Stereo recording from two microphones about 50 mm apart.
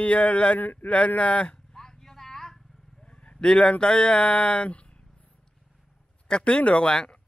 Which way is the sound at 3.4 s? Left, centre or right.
Centre.